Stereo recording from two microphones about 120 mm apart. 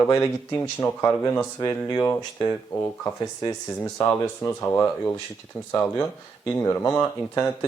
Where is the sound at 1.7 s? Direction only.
20° left (ahead or behind).